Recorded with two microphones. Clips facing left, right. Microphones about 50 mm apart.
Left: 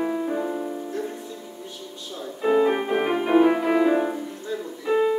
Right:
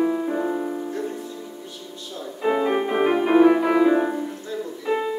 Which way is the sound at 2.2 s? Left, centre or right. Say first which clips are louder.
Left 2 dB; centre.